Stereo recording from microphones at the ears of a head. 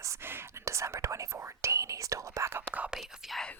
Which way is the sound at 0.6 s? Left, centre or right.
Right.